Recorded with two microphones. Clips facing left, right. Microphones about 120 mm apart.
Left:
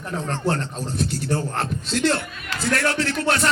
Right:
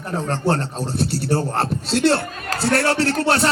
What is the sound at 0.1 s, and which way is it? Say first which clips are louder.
A man's voice: right 4 dB; 30° right (ahead or behind).